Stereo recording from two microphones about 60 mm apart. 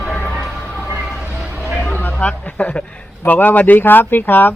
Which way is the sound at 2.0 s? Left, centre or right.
Left.